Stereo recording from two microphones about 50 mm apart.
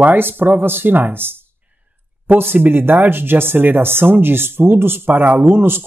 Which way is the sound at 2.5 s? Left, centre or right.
Right.